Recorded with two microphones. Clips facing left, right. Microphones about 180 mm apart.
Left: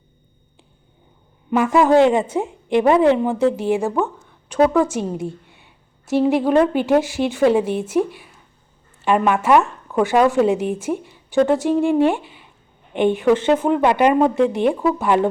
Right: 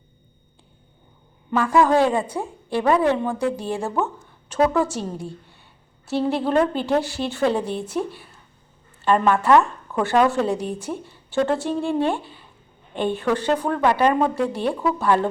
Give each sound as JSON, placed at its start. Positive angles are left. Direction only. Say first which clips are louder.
{"t": 1.5, "sound": "a woman's voice", "louder": "left 3 dB", "side_deg": 20}
{"t": 4.4, "sound": "a sound", "louder": "left 4 dB", "side_deg": 15}
{"t": 4.9, "sound": "a woman's voice", "louder": "left 5 dB", "side_deg": 15}